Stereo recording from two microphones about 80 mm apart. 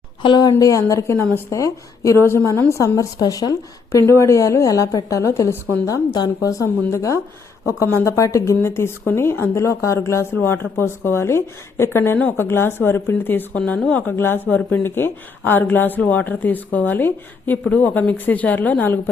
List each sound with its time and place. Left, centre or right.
0.2 s speech: left
0.6 s a woman's voice: left
4.0 s speech: left
5.8 s a woman's voice: left
9.6 s speech: left
13.6 s speech: centre
14.2 s speech: left